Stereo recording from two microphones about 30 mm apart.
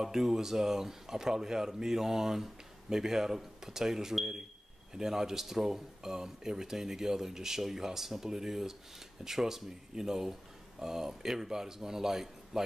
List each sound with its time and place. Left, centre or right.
0.0 s speech: centre